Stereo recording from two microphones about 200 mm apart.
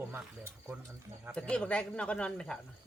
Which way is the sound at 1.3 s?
5° left (ahead or behind).